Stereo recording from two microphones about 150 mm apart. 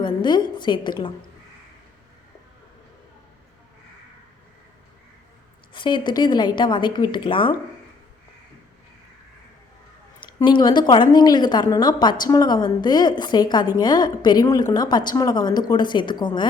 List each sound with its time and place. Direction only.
0.0 s a woman's voice: 30° left (ahead or behind)
5.7 s a woman's voice: 30° left (ahead or behind)
10.2 s a woman's voice: 30° left (ahead or behind)